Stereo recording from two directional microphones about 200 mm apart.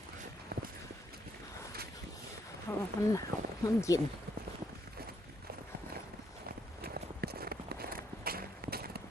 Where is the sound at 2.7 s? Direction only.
10° left (ahead or behind).